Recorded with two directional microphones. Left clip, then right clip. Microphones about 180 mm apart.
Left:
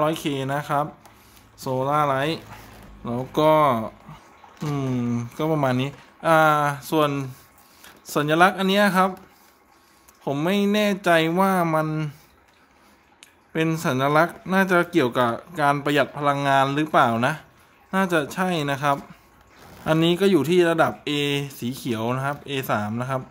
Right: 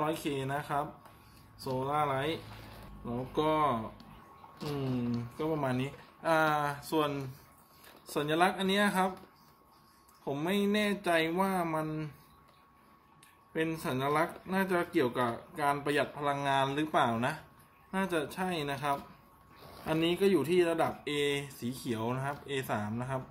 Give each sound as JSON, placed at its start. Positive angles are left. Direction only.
{"t": 0.0, "sound": "speech", "side_deg": 50}
{"t": 1.6, "sound": "speech", "side_deg": 65}
{"t": 5.4, "sound": "speech", "side_deg": 60}
{"t": 10.2, "sound": "speech", "side_deg": 50}
{"t": 13.5, "sound": "speech", "side_deg": 60}